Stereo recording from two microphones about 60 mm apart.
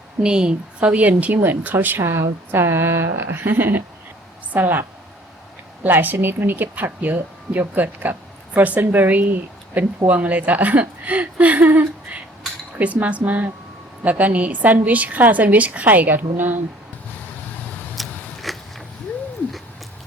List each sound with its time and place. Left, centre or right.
0.2 s a woman's voice: centre
1.4 s a woman's voice: right
17.9 s a sound: centre